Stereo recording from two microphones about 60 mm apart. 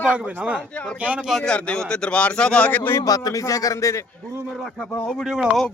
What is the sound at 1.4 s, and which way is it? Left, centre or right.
A man's voice, centre.